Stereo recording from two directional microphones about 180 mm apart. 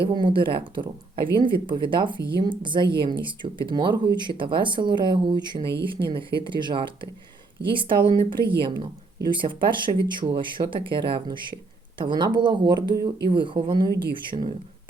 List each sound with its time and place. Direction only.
0.0 s speech: 25° right (ahead or behind)